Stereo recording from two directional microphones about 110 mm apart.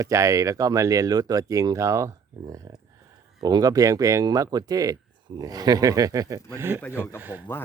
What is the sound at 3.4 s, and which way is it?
Speech, 35° right (ahead or behind).